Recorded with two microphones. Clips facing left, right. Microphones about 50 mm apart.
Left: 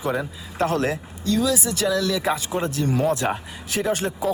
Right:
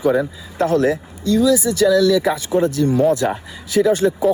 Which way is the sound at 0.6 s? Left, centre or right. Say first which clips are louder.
Right 6 dB; left.